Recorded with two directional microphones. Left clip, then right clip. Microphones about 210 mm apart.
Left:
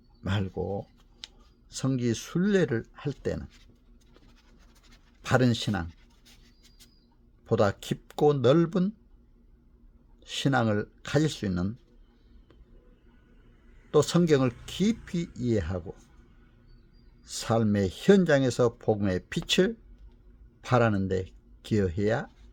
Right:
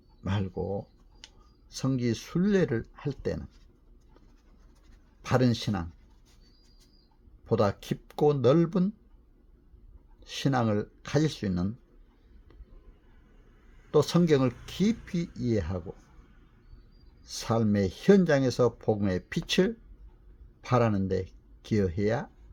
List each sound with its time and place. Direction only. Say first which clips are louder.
0.2 s speech: left 1 dB; 10° left (ahead or behind)
1.2 s a sound: left 6 dB; 35° left (ahead or behind)
1.7 s speech: left 1 dB; 10° left (ahead or behind)
5.2 s speech: left 2 dB; 10° left (ahead or behind)
7.4 s speech: left 1 dB; 10° left (ahead or behind)
10.2 s speech: left 2 dB; 10° left (ahead or behind)
13.9 s speech: left 1 dB; 10° left (ahead or behind)
17.2 s speech: left 2 dB; 10° left (ahead or behind)